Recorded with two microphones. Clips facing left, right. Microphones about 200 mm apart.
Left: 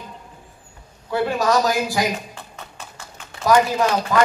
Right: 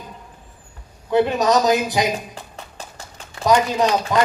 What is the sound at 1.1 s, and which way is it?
Speech, 20° right (ahead or behind).